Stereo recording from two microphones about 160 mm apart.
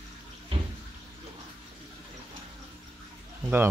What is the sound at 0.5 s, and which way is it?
Bathtub, 35° right (ahead or behind).